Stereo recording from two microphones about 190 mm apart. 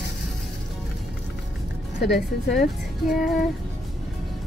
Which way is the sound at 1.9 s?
60° left (ahead or behind).